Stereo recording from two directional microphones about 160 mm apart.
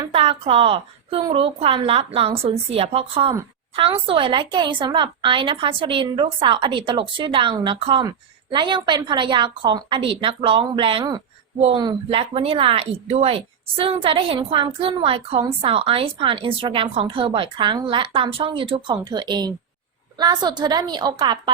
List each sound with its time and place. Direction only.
0.1 s a woman's voice: 35° right (ahead or behind)